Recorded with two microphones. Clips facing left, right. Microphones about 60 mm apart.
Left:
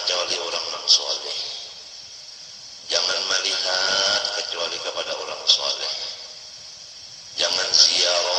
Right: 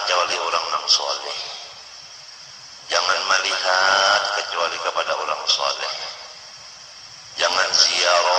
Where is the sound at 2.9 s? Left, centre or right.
Right.